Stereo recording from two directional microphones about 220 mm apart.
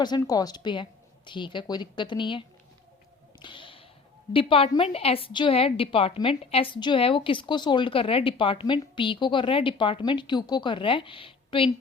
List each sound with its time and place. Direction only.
0.0 s a woman's voice: 20° left (ahead or behind)
3.4 s a sound: 20° left (ahead or behind)
4.3 s a woman's voice: 25° left (ahead or behind)